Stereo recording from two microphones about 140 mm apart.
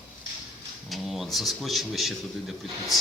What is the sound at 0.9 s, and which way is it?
Speech, centre (ahead or behind).